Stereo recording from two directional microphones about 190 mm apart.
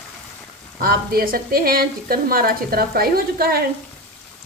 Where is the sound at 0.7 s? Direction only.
50° right (ahead or behind).